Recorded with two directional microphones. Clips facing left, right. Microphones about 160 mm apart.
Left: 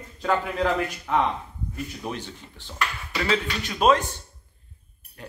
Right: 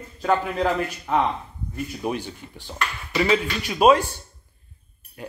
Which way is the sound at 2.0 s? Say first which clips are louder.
Right 5 dB; 10° right (ahead or behind).